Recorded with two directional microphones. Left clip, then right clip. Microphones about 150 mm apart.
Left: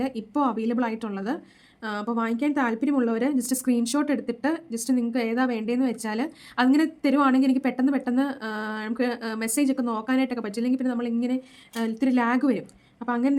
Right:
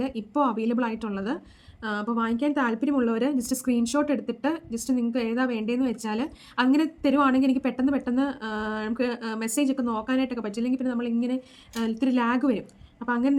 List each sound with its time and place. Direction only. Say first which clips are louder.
0.0 s a woman's voice: even; 35° left (ahead or behind)